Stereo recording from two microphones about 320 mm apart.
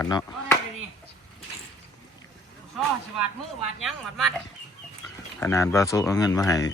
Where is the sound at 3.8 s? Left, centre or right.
Centre.